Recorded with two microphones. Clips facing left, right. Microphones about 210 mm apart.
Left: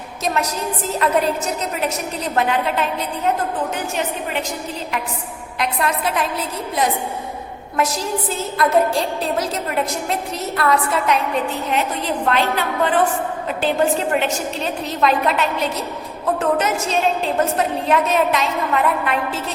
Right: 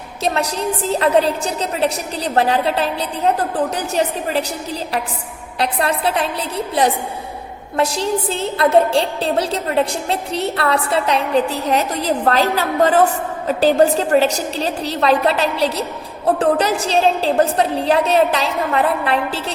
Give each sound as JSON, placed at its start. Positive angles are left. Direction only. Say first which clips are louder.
{"t": 0.9, "sound": "a woman's voice", "louder": "right 3 dB", "side_deg": -30}
{"t": 5.5, "sound": "a woman's voice", "louder": "right 2 dB", "side_deg": -30}
{"t": 7.8, "sound": "a woman's voice", "louder": "right 3 dB", "side_deg": -30}